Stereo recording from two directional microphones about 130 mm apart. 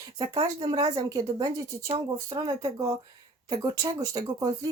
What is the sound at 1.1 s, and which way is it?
Speech, 30° right (ahead or behind).